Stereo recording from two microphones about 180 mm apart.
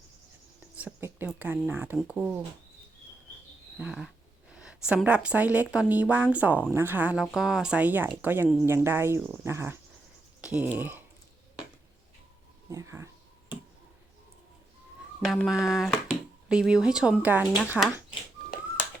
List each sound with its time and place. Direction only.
0.8 s a sound: 10° right (ahead or behind)
1.4 s a woman's voice: 10° right (ahead or behind)
3.8 s a woman's voice: 5° right (ahead or behind)
12.7 s a woman's voice: 15° right (ahead or behind)
15.2 s a woman's voice: centre (ahead or behind)